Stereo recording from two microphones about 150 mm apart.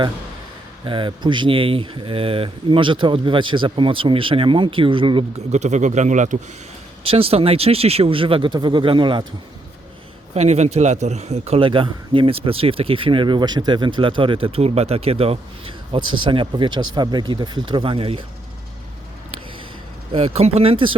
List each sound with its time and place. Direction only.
0.9 s a man's voice: 35° right (ahead or behind)
5.5 s speech: 50° right (ahead or behind)
7.0 s a man's voice: 40° right (ahead or behind)
10.3 s a man's voice: 45° right (ahead or behind)
20.1 s a man's voice: 40° right (ahead or behind)